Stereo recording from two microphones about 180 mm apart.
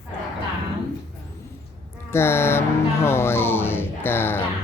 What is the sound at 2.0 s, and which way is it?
Speech, 15° left (ahead or behind).